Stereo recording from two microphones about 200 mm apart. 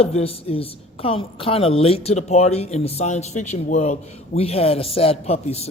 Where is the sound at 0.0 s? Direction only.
30° left (ahead or behind).